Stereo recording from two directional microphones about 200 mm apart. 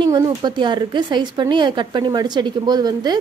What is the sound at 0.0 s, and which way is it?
Speech, 20° right (ahead or behind).